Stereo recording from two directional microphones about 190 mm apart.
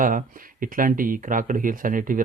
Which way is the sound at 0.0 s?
45° right (ahead or behind).